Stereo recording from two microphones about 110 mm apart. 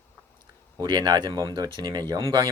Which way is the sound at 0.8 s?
40° right (ahead or behind).